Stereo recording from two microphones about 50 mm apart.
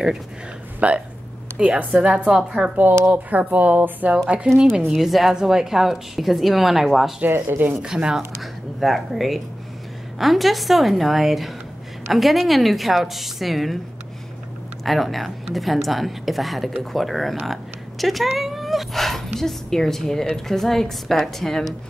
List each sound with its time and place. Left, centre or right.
0.7 s a woman's voice: right
3.1 s speech: right
4.3 s a woman's voice: right
4.8 s speech: centre
7.2 s speech: right
7.7 s speech: centre
8.4 s speech: centre
14.9 s speech: centre